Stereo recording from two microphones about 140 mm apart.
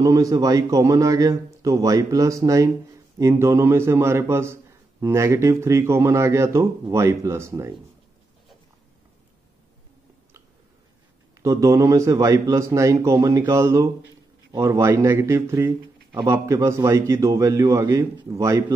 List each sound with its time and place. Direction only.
0.0 s speech: 25° right (ahead or behind)
11.4 s speech: 25° right (ahead or behind)